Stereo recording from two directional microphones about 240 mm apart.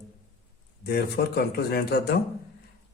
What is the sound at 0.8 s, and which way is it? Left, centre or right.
Speech, left.